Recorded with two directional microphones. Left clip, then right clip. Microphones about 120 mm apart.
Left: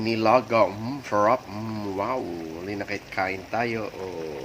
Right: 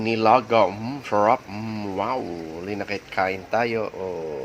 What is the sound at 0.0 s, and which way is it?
Speech, 25° right (ahead or behind).